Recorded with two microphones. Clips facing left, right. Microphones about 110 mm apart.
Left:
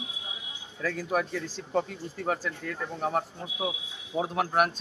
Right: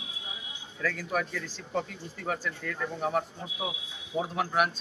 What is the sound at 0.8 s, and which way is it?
A man's voice, 25° left (ahead or behind).